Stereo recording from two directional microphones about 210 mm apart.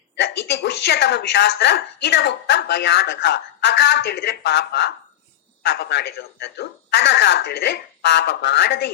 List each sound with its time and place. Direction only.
0.2 s a woman's voice: 50° left (ahead or behind)